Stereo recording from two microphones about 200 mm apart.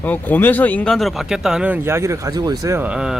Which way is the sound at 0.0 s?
10° left (ahead or behind).